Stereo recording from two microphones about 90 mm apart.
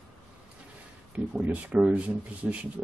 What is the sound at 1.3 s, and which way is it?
Speech, 15° right (ahead or behind).